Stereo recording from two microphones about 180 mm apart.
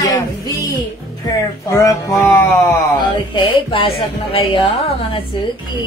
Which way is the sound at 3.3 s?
30° left (ahead or behind).